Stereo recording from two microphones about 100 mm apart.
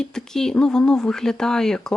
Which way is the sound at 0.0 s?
5° left (ahead or behind).